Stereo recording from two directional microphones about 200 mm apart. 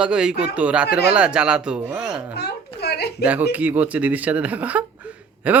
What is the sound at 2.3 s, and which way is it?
Speech, 55° left (ahead or behind).